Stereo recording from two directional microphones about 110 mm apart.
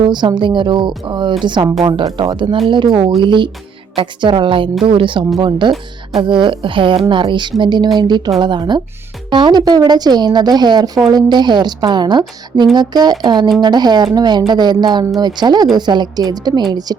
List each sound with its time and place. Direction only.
0.0 s a woman's voice: 45° right (ahead or behind)